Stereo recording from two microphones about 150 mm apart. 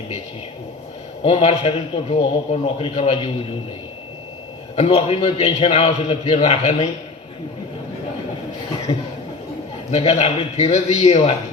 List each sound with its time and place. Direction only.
1.2 s a man's voice: 40° left (ahead or behind)
4.8 s a man's voice: 40° left (ahead or behind)
9.9 s a man's voice: 45° left (ahead or behind)